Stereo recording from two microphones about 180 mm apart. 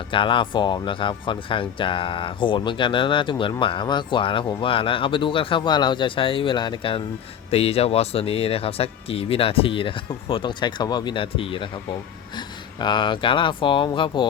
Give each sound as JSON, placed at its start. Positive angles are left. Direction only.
{"t": 0.1, "sound": "speech", "side_deg": 25}